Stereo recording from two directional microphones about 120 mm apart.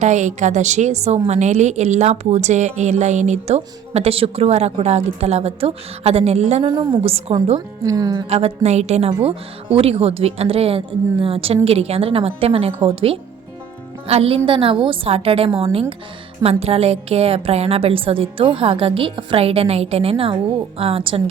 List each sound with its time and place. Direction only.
0.0 s a woman's voice: 80° right; by 7.3 s 55° right (ahead or behind)
7.9 s speech: 30° right (ahead or behind)
8.3 s a woman's voice: 60° right (ahead or behind)